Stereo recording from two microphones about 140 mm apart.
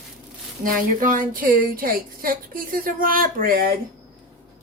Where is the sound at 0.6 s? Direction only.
75° right (ahead or behind).